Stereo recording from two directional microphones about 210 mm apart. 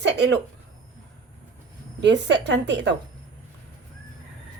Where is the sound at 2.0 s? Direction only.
55° right (ahead or behind).